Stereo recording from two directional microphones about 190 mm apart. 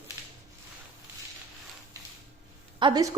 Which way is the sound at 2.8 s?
20° right (ahead or behind).